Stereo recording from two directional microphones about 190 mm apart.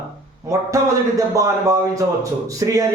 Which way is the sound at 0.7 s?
15° right (ahead or behind).